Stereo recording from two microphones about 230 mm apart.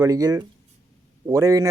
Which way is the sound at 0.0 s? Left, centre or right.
Centre.